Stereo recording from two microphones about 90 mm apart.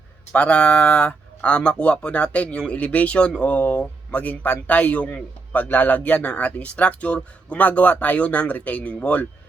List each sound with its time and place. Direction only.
0.3 s speech: 15° left (ahead or behind)